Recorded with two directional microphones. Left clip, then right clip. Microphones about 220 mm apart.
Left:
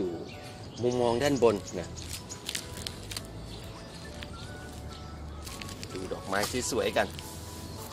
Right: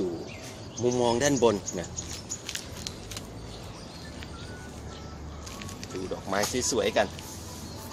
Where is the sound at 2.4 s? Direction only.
40° left (ahead or behind).